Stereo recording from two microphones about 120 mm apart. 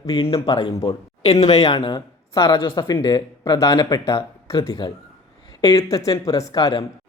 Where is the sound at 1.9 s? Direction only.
35° left (ahead or behind).